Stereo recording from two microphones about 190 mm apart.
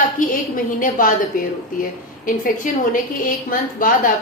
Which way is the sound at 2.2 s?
45° left (ahead or behind).